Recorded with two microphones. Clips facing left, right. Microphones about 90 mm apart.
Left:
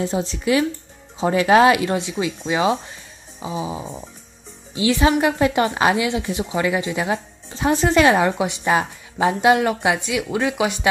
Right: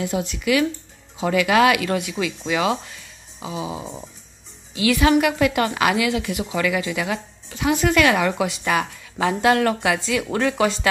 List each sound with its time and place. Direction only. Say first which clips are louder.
0.0 s speech: left 2 dB; 30° left (ahead or behind); by 10.9 s 15° left (ahead or behind)